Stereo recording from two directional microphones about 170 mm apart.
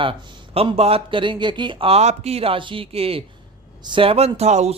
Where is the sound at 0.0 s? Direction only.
35° right (ahead or behind).